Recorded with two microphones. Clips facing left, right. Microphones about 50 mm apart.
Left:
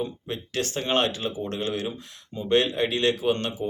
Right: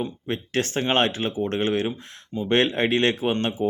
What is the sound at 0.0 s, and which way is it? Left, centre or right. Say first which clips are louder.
Speech: right 2 dB; right.